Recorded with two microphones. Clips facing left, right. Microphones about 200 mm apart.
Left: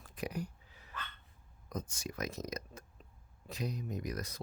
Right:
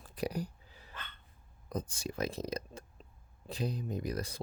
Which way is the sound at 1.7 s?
30° right (ahead or behind).